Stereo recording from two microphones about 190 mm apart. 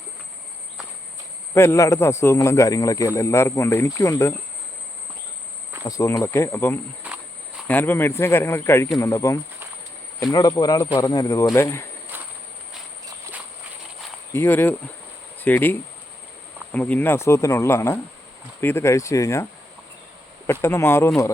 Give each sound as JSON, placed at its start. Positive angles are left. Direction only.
{"t": 1.5, "sound": "a man's voice", "side_deg": 15}
{"t": 5.8, "sound": "a man's voice", "side_deg": 15}
{"t": 12.1, "sound": "a sound", "side_deg": -10}
{"t": 14.3, "sound": "a man's voice", "side_deg": 10}
{"t": 20.5, "sound": "a man's voice", "side_deg": 10}